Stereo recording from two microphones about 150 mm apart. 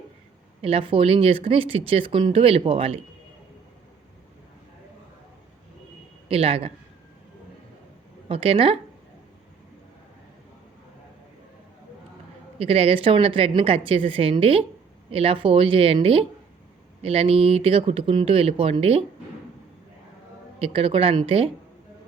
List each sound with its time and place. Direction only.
0.6 s speech: 40° right (ahead or behind)
6.2 s speech: 40° right (ahead or behind)
8.3 s speech: 40° right (ahead or behind)
12.5 s speech: 40° right (ahead or behind)
20.6 s speech: 40° right (ahead or behind)